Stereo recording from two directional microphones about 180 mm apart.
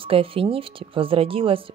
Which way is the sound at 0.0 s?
30° right (ahead or behind).